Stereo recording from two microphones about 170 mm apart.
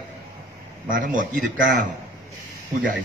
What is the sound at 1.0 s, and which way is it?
Speech, 50° right (ahead or behind).